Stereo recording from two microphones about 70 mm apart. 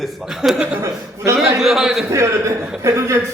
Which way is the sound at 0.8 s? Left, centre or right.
Right.